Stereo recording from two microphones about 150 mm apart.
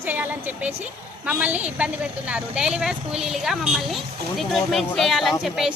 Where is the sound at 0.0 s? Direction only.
10° right (ahead or behind).